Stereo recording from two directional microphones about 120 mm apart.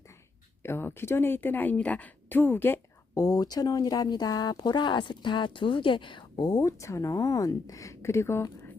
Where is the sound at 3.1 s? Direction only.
30° left (ahead or behind).